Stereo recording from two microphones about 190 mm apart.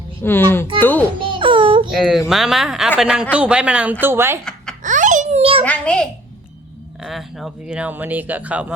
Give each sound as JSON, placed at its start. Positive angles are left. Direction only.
{"t": 0.2, "sound": "a child's voice", "side_deg": 10}
{"t": 1.2, "sound": "baby cry", "side_deg": -25}
{"t": 1.9, "sound": "speech", "side_deg": 0}
{"t": 4.8, "sound": "babbling", "side_deg": -40}
{"t": 5.6, "sound": "speech", "side_deg": 5}